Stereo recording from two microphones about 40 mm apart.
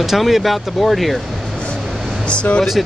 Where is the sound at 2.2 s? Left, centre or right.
Left.